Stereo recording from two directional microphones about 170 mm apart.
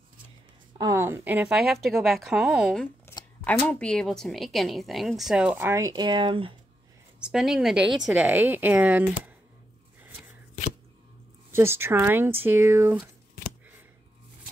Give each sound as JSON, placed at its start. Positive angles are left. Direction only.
{"t": 0.7, "sound": "a woman's voice", "side_deg": -20}
{"t": 7.2, "sound": "a woman's voice", "side_deg": -5}
{"t": 11.5, "sound": "a woman's voice", "side_deg": -15}